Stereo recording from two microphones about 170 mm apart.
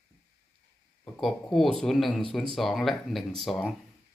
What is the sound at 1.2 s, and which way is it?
Speech, centre (ahead or behind).